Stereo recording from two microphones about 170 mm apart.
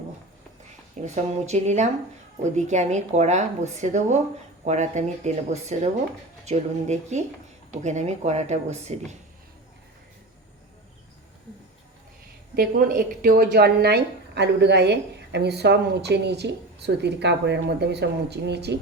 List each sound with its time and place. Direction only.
0.9 s a woman's voice: 40° right (ahead or behind)
12.5 s a woman's voice: 55° right (ahead or behind); by 18.8 s 80° right